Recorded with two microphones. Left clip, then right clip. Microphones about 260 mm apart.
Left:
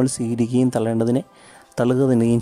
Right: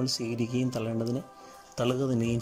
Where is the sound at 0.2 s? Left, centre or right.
Left.